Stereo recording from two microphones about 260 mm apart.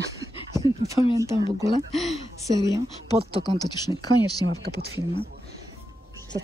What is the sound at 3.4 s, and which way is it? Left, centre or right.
Speech, centre.